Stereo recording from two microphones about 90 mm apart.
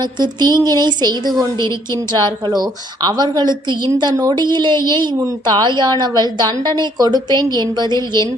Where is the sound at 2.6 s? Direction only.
50° right (ahead or behind).